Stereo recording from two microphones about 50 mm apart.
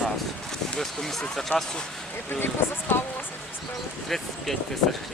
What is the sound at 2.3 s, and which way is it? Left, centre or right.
Speech, left.